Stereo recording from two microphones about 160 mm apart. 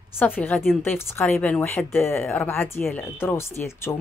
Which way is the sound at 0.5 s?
5° left (ahead or behind).